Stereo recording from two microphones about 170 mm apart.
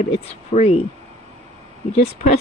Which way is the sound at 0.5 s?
40° left (ahead or behind).